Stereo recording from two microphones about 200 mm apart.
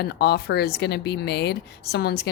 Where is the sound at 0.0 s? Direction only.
55° left (ahead or behind).